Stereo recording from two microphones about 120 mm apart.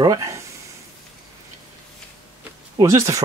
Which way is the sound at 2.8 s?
25° right (ahead or behind).